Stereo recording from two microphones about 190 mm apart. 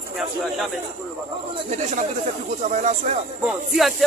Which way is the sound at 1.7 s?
40° right (ahead or behind).